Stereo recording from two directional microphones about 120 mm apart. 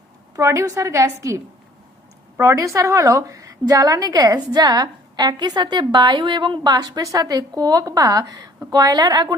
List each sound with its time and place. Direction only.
0.3 s a woman's voice: 25° right (ahead or behind)
2.4 s a woman's voice: 25° right (ahead or behind)